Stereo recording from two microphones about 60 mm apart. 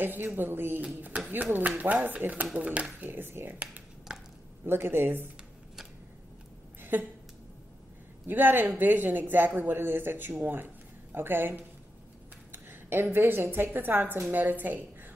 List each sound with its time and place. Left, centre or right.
0.0 s speech: right
3.1 s speech: right
4.1 s a sound: centre
4.6 s speech: right
6.8 s a sound: right
8.3 s speech: right
12.6 s a woman's voice: right